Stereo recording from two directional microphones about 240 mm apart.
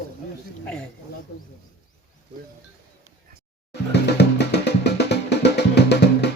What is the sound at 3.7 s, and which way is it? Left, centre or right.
Music, left.